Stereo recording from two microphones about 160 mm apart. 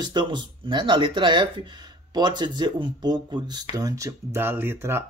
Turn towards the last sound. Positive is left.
turn(degrees=-15)  # may be behind; listen again after turning